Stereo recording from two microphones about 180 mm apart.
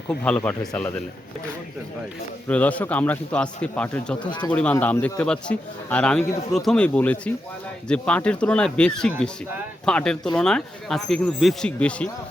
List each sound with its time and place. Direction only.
0.1 s speech: 5° left (ahead or behind)
2.5 s a man's voice: 10° left (ahead or behind)
4.2 s speech: 25° left (ahead or behind)
4.5 s a man's voice: 10° left (ahead or behind)